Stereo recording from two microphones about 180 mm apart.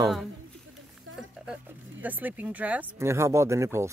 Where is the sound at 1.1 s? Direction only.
90° right.